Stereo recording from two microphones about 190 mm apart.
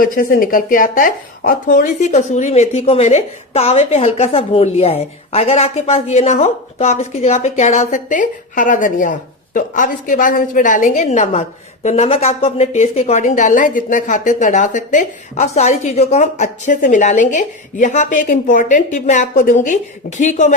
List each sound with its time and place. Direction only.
0.0 s speech: 50° left (ahead or behind)